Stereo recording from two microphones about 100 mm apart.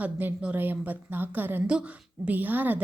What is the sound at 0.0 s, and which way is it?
A woman's voice, 15° right (ahead or behind).